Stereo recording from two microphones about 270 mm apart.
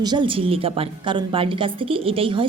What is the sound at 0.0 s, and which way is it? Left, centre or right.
Speech, centre.